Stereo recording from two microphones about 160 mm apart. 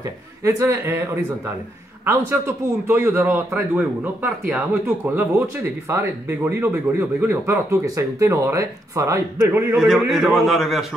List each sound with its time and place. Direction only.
0.4 s a man's voice: 20° right (ahead or behind)
9.8 s a man's voice: centre (ahead or behind)